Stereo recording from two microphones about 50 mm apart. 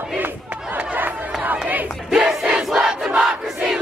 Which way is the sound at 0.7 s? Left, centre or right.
Right.